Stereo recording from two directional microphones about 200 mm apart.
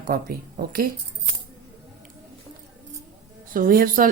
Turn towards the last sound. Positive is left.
turn(degrees=-45)  # may be behind; listen again after turning